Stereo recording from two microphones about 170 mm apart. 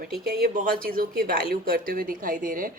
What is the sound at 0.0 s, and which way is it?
Speech, 55° right (ahead or behind).